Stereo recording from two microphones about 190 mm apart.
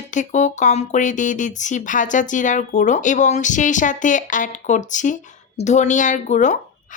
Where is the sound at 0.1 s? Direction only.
40° left (ahead or behind).